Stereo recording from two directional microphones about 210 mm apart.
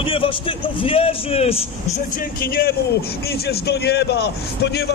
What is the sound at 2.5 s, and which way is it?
A man's voice, 45° left (ahead or behind).